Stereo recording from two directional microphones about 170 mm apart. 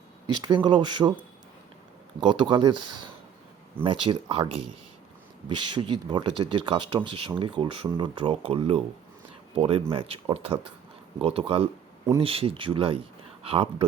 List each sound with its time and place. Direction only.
0.4 s speech: 30° right (ahead or behind)
2.2 s speech: 25° right (ahead or behind)
3.8 s speech: 30° right (ahead or behind)